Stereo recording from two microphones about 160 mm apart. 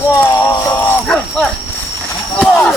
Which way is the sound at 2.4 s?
5° left (ahead or behind).